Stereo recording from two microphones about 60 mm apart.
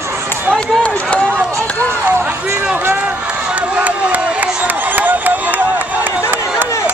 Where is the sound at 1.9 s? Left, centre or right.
Right.